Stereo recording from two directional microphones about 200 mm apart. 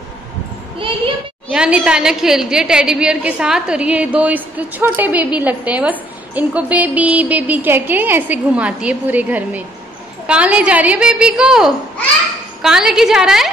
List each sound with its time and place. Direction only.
0.7 s a child's voice: 25° right (ahead or behind)
1.5 s a woman's voice: 5° right (ahead or behind)